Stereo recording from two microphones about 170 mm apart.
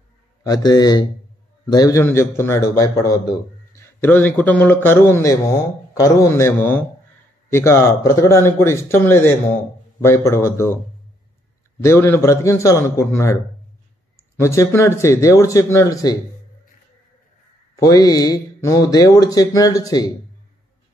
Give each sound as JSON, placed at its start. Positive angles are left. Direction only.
{"t": 0.4, "sound": "a man's voice", "side_deg": 20}
{"t": 11.8, "sound": "a man's voice", "side_deg": 15}
{"t": 17.7, "sound": "speech", "side_deg": 20}